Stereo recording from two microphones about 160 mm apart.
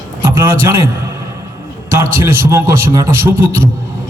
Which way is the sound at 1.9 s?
15° right (ahead or behind).